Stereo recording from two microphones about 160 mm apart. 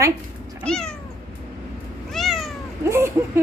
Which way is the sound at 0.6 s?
5° left (ahead or behind).